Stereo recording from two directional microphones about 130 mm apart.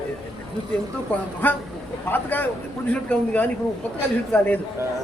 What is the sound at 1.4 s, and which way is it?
A man's voice, 15° left (ahead or behind).